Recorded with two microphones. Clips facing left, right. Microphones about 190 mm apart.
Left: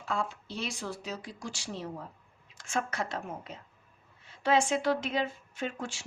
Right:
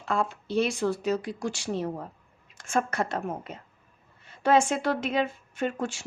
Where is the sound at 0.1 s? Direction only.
60° right (ahead or behind).